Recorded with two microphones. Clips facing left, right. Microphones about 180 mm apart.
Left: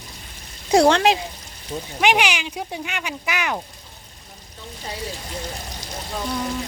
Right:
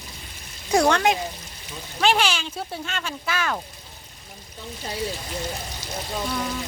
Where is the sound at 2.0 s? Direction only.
15° left (ahead or behind).